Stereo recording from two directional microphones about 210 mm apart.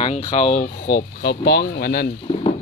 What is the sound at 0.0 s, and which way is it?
Speech, 30° left (ahead or behind).